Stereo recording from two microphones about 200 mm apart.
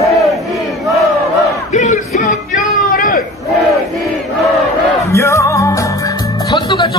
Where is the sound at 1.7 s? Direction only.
40° left (ahead or behind).